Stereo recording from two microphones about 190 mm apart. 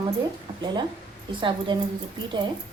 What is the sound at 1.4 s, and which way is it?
Speech, 25° right (ahead or behind).